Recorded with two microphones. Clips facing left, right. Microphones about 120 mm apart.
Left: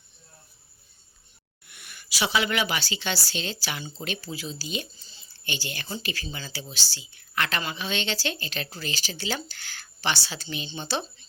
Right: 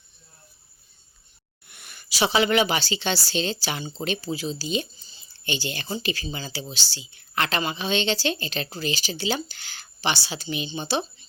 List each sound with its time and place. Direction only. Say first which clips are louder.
1.6 s a woman's voice: even; 30° right (ahead or behind); by 11.3 s 15° right (ahead or behind)